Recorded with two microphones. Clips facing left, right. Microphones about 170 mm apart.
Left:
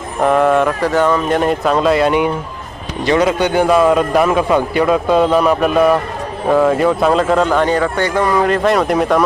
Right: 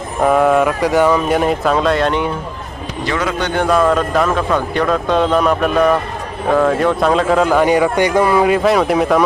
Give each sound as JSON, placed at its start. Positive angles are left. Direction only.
{"t": 0.2, "sound": "speech", "side_deg": -5}
{"t": 3.1, "sound": "a man's voice", "side_deg": 20}
{"t": 3.4, "sound": "a man's voice", "side_deg": 10}